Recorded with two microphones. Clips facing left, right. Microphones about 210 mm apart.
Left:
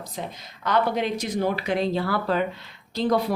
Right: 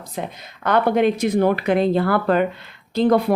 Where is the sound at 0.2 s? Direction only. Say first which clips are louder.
Right 6 dB; 55° right (ahead or behind).